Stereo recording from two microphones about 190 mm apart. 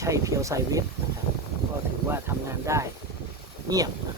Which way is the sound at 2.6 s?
15° right (ahead or behind).